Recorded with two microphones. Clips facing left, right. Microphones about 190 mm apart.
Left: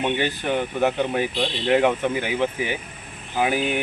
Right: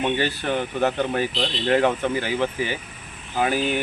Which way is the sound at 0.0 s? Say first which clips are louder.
Even; 15° left (ahead or behind).